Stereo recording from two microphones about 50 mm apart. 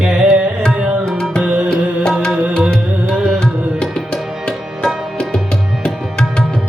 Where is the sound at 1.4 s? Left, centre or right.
Right.